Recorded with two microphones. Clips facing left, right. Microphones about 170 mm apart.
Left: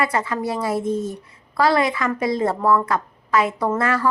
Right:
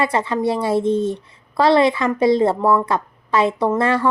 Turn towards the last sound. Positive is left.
turn(degrees=-25)  # may be behind; listen again after turning